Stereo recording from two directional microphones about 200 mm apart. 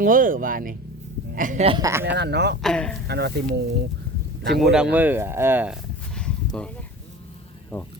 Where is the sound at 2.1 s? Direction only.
55° right (ahead or behind).